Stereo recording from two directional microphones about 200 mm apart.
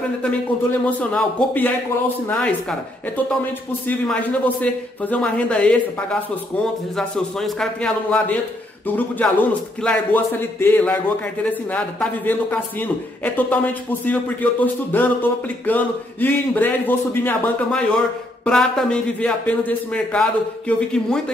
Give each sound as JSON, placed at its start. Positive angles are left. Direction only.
{"t": 0.2, "sound": "a man's voice", "side_deg": 5}
{"t": 3.8, "sound": "a man's voice", "side_deg": 10}